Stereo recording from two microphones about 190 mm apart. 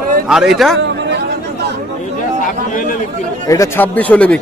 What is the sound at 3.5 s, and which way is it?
Speech, 15° left (ahead or behind).